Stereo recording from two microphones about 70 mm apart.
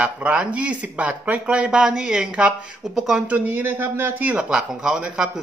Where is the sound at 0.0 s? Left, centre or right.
Centre.